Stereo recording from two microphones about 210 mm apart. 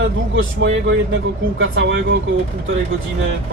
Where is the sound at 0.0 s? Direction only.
60° right (ahead or behind).